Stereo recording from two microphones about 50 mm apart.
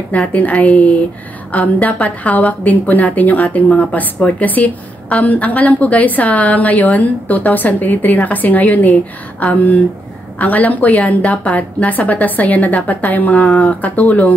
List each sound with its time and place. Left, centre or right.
0.3 s a woman's voice: left